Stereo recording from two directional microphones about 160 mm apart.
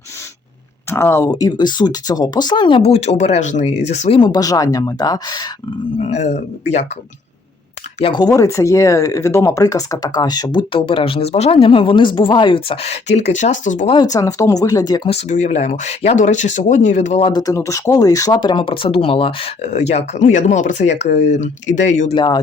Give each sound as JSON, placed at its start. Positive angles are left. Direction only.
{"t": 0.9, "sound": "speech", "side_deg": 15}
{"t": 4.2, "sound": "speech", "side_deg": 25}
{"t": 6.0, "sound": "speech", "side_deg": 45}
{"t": 7.9, "sound": "speech", "side_deg": 35}
{"t": 8.2, "sound": "speech", "side_deg": 20}
{"t": 13.9, "sound": "speech", "side_deg": 25}
{"t": 15.1, "sound": "speech", "side_deg": 50}
{"t": 17.2, "sound": "speech", "side_deg": 25}
{"t": 22.1, "sound": "speech", "side_deg": 25}